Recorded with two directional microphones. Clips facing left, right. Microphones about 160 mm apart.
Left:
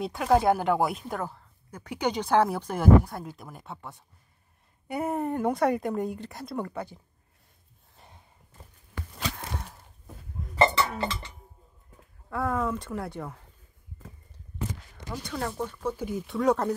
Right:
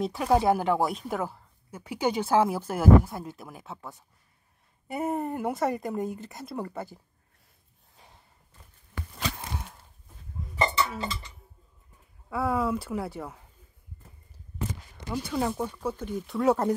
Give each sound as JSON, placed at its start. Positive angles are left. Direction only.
{"t": 0.0, "sound": "speech", "side_deg": 0}
{"t": 10.0, "sound": "hiccup", "side_deg": 85}
{"t": 11.0, "sound": "chink", "side_deg": 70}
{"t": 12.3, "sound": "speech", "side_deg": -5}
{"t": 15.0, "sound": "speech", "side_deg": -10}
{"t": 16.0, "sound": "speech", "side_deg": 5}